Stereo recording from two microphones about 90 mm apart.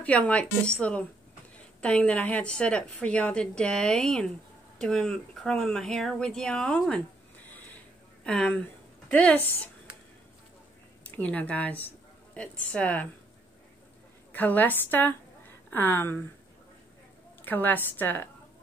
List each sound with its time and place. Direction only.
0.0 s a woman's voice: 15° left (ahead or behind)
7.4 s a sound: 20° left (ahead or behind)
9.1 s a woman's voice: 20° left (ahead or behind)
11.1 s a woman's voice: 20° left (ahead or behind)
14.3 s a woman's voice: 20° left (ahead or behind)
17.5 s a woman's voice: 20° left (ahead or behind)